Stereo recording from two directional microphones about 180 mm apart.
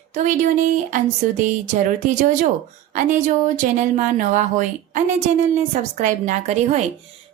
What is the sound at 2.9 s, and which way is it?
A woman's voice, 45° right (ahead or behind).